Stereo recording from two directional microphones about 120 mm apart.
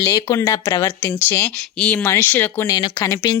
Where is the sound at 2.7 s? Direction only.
30° left (ahead or behind).